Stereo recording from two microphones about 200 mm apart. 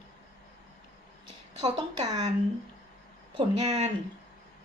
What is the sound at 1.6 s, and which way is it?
Speech, 20° right (ahead or behind).